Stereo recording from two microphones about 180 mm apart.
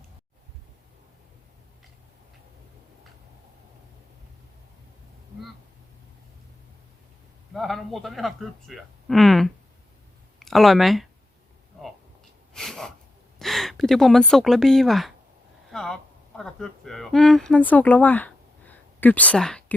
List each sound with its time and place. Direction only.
7.5 s speech: centre (ahead or behind)
12.5 s sneeze: 5° left (ahead or behind)
13.4 s a woman's voice: centre (ahead or behind)
15.7 s a sound: 5° left (ahead or behind)
16.4 s speech: centre (ahead or behind)